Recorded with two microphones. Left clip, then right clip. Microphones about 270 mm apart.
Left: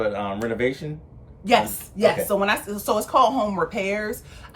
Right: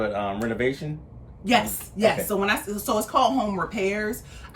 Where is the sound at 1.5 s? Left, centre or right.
Centre.